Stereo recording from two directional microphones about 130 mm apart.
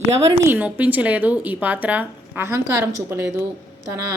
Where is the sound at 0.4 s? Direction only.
15° right (ahead or behind).